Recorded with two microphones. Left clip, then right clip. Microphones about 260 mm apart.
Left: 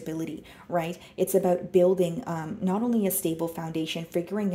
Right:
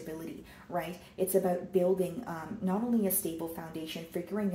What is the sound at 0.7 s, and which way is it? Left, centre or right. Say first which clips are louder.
A woman's voice: left 7 dB; left.